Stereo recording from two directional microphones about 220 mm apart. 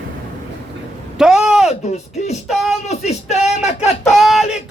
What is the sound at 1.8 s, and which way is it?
Speech, 30° left (ahead or behind).